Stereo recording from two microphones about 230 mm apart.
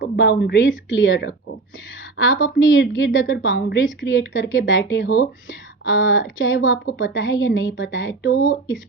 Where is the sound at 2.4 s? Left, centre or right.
Left.